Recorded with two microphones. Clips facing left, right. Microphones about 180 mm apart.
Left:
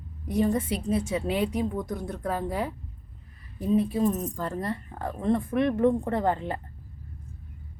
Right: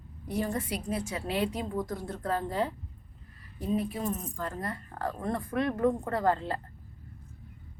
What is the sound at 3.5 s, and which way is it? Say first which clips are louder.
Speech: left 6 dB; 25° left (ahead or behind).